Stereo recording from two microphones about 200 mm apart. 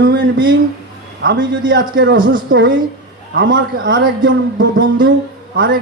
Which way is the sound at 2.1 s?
45° right (ahead or behind).